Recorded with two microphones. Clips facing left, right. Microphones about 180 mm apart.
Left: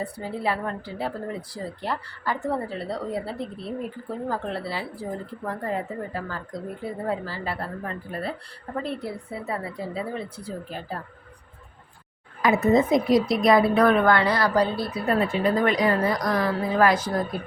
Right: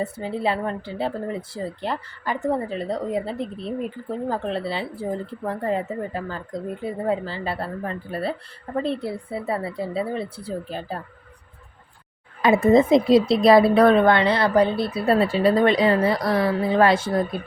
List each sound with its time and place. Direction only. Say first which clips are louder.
0.0 s speech: right 3 dB; 20° right (ahead or behind)
12.4 s speech: right 4 dB; 30° right (ahead or behind)